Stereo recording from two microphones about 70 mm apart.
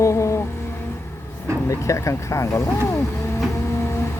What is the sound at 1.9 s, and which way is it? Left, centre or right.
Speech, left.